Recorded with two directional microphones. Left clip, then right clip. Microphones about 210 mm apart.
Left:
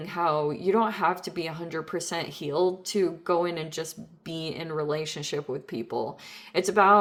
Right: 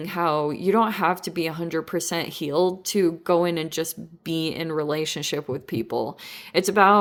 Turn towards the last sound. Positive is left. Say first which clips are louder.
# right 3 dB
turn(degrees=-35)  # may be behind; listen again after turning